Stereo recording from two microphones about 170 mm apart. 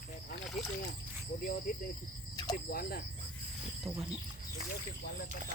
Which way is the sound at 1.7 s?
55° left (ahead or behind).